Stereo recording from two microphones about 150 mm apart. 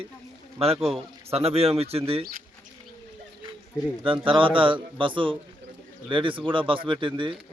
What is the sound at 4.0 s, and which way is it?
A man's voice, 35° right (ahead or behind).